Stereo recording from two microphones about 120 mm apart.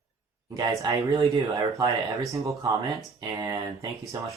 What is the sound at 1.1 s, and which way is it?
Speech, 45° right (ahead or behind).